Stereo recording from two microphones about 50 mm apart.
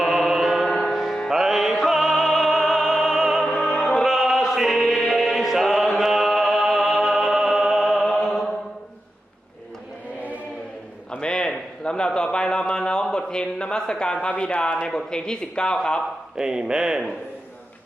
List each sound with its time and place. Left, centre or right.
0.0 s mantra: centre
0.6 s music: centre
0.9 s music: centre
3.4 s opera: centre
4.0 s chant: centre
4.9 s music: centre
8.2 s chant: centre
11.2 s a sound: centre
14.8 s a man's voice: centre
16.4 s speech: centre